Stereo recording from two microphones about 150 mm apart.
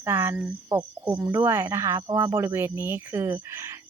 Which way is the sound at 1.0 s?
15° right (ahead or behind).